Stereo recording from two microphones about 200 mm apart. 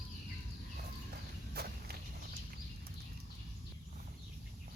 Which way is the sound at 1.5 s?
50° right (ahead or behind).